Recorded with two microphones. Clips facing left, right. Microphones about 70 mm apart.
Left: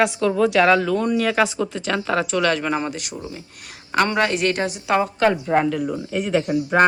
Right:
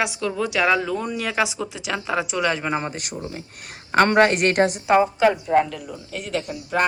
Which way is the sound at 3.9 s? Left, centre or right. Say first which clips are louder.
Right 3 dB; right.